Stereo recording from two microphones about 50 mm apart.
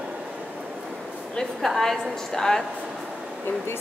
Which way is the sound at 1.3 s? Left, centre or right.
Centre.